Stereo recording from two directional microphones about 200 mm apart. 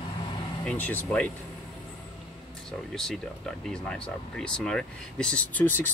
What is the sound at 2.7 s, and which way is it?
Speech, centre (ahead or behind).